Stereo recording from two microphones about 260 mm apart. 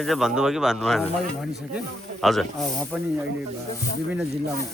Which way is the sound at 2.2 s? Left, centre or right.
Centre.